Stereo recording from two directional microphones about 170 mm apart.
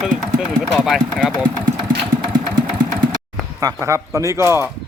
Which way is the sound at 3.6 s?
15° right (ahead or behind).